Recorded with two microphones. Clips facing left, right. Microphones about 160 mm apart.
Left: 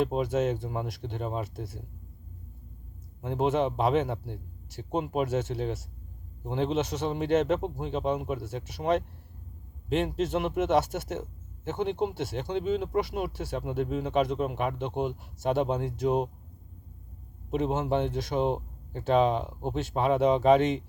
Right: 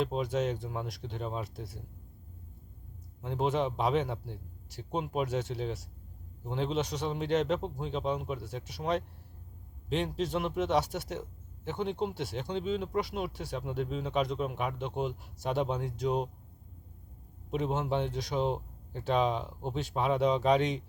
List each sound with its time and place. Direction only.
0.2 s speech: centre (ahead or behind)
3.2 s speech: 5° left (ahead or behind)
17.5 s speech: centre (ahead or behind)
18.3 s speech: 55° left (ahead or behind)
19.0 s speech: centre (ahead or behind)